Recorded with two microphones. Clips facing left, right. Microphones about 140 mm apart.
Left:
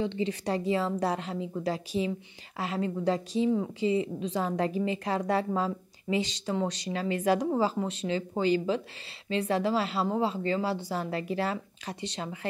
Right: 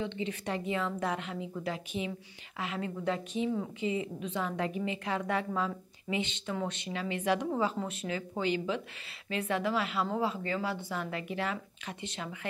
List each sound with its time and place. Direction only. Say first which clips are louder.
0.0 s a woman's voice: left 5 dB; 35° left (ahead or behind)